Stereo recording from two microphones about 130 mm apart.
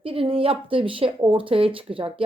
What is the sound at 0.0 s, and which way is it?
A woman's voice, 45° right (ahead or behind).